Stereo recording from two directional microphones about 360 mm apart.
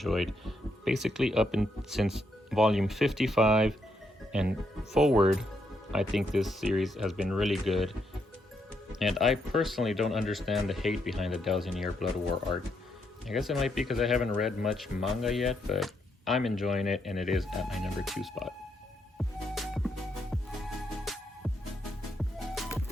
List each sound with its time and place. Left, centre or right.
0.0 s speech: centre
9.0 s speech: centre
13.2 s speech: centre
19.5 s music: centre
21.1 s music: centre